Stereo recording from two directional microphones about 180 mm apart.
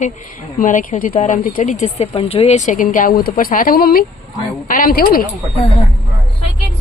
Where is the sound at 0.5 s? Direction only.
45° left (ahead or behind).